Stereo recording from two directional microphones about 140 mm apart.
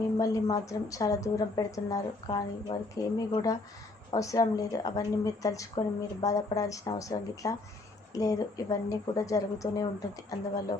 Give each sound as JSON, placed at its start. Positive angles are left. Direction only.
{"t": 0.2, "sound": "a woman's voice", "side_deg": 25}